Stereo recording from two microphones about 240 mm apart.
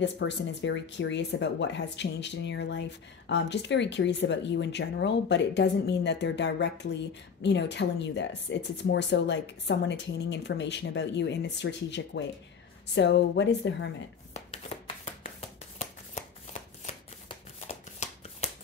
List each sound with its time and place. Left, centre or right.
0.0 s speech: left
16.8 s shuffling cards: left